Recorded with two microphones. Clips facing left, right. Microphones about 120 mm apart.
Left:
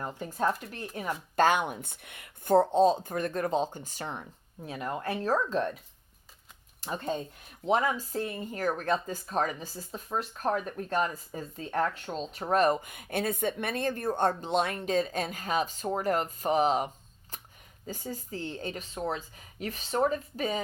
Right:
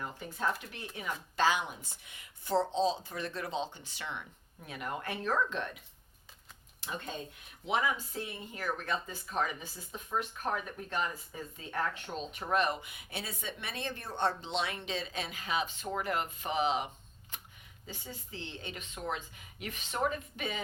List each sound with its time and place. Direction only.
0.0 s speech: 40° left (ahead or behind)
6.8 s speech: 40° left (ahead or behind)